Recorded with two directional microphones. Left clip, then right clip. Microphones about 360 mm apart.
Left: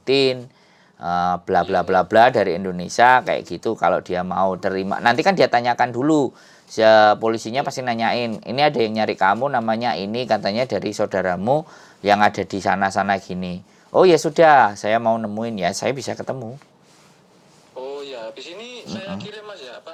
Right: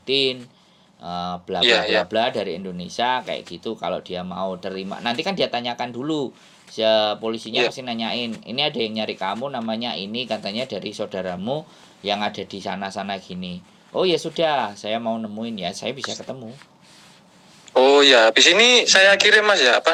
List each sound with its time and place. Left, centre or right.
0.0 s speech: left
13.3 s speech: left
13.9 s speech: left
17.7 s a man's voice: right